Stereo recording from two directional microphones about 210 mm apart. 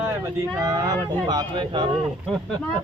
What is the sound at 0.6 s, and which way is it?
A man's voice, 15° right (ahead or behind).